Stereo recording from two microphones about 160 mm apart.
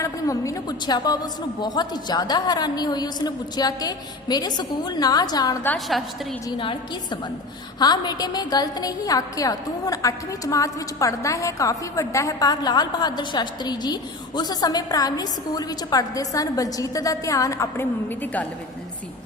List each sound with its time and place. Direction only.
0.0 s a woman's voice: 20° left (ahead or behind)
5.6 s a woman's voice: centre (ahead or behind)
6.6 s a woman's voice: 35° left (ahead or behind); by 18.4 s 15° left (ahead or behind)